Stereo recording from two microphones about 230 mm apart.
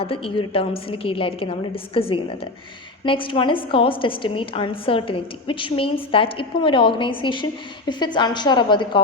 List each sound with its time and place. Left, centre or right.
0.0 s a woman's voice: left